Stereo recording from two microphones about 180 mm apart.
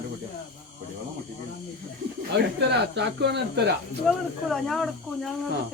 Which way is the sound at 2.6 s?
70° right (ahead or behind).